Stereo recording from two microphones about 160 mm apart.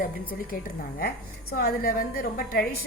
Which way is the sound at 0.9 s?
65° left (ahead or behind).